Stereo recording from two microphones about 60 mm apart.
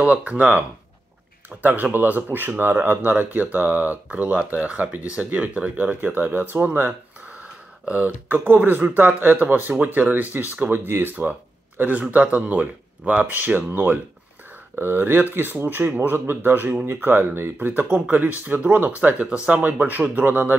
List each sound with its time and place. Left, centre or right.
0.0 s speech: right
6.9 s a sound: right
7.9 s speech: right
19.6 s speech: right